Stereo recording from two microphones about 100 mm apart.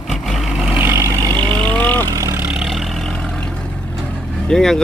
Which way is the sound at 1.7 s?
15° left (ahead or behind).